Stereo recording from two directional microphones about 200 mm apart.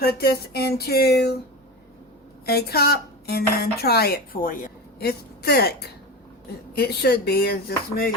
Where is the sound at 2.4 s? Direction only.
50° left (ahead or behind).